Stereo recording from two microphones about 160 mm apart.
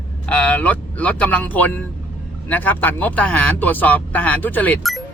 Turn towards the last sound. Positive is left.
turn(degrees=10)  # may be behind; listen again after turning